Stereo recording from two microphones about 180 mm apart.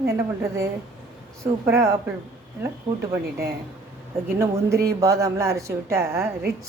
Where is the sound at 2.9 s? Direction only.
25° right (ahead or behind).